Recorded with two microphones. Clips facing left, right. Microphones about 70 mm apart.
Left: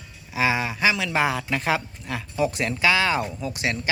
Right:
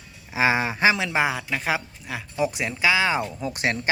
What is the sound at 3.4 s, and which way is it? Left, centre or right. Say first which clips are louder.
Speech: right 2 dB; right.